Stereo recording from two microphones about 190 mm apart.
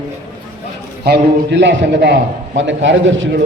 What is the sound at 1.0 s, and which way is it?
A man's voice, 60° right (ahead or behind).